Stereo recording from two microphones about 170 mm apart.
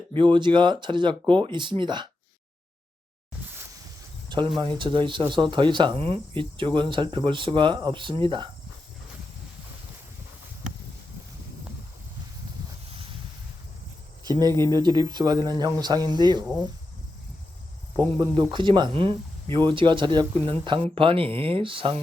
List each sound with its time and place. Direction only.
0.1 s speech: 30° right (ahead or behind)
4.3 s speech: 30° right (ahead or behind)
14.7 s speech: 25° right (ahead or behind)
17.9 s speech: 10° left (ahead or behind)
18.2 s speech: 30° right (ahead or behind)